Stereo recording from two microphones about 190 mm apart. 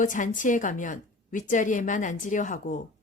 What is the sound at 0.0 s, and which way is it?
A woman's voice, 45° left (ahead or behind).